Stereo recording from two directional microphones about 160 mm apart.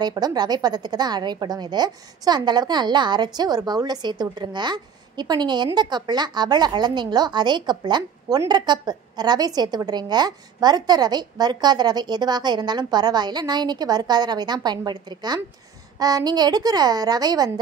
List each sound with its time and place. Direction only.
0.0 s a woman's voice: 25° right (ahead or behind)